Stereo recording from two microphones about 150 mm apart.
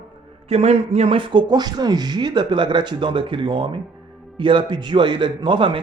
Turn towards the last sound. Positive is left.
turn(degrees=-35)  # may be behind; listen again after turning